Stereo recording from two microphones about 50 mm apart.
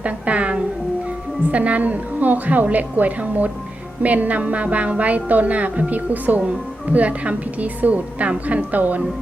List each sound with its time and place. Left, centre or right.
0.0 s music: right
1.5 s a woman's voice: right
6.4 s a woman's voice: right